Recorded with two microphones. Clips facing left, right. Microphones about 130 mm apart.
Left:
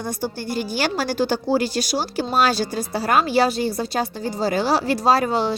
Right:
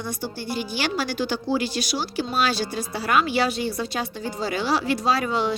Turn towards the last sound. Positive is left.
turn(degrees=40)  # may be behind; listen again after turning